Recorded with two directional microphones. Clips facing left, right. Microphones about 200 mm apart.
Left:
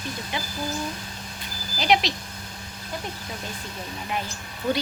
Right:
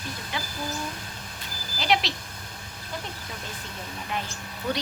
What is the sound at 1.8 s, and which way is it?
Speech, 15° left (ahead or behind).